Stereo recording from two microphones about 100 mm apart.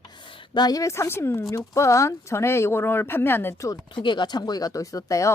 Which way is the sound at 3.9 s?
50° left (ahead or behind).